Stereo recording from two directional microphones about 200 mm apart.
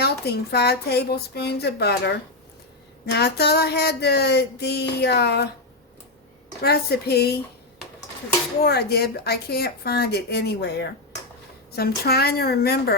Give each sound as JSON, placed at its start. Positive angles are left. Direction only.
{"t": 0.0, "sound": "a sound", "side_deg": 55}
{"t": 6.6, "sound": "a woman's voice", "side_deg": 55}
{"t": 8.6, "sound": "a woman's voice", "side_deg": 55}